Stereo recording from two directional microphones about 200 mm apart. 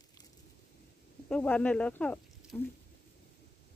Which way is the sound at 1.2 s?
5° left (ahead or behind).